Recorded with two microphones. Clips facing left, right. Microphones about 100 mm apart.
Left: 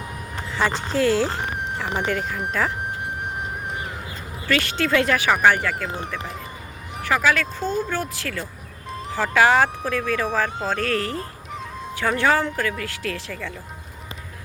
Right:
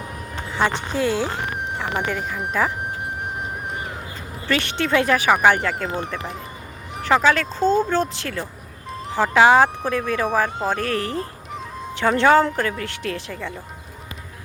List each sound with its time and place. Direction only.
0.5 s speech: 20° right (ahead or behind)
4.4 s speech: 25° right (ahead or behind)
5.5 s speech: 35° right (ahead or behind)
7.0 s speech: 25° right (ahead or behind)